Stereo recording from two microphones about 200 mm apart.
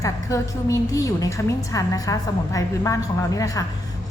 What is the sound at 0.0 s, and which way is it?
A woman's voice, 15° left (ahead or behind).